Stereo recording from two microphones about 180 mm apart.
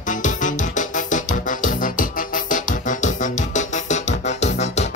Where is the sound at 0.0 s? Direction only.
45° left (ahead or behind).